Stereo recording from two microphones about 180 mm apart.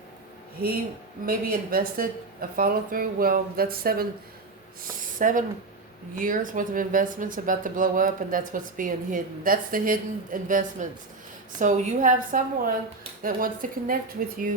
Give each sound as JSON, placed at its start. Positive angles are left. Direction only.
{"t": 1.2, "sound": "speech", "side_deg": -55}